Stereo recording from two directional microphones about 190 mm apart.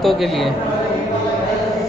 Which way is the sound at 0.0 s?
Centre (ahead or behind).